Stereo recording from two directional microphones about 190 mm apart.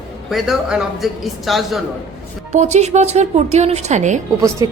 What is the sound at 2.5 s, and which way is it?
Speech, 35° right (ahead or behind).